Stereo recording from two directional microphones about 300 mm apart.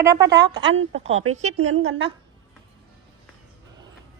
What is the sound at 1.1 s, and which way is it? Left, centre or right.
Speech, right.